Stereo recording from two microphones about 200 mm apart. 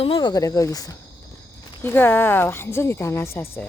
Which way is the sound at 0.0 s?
25° left (ahead or behind).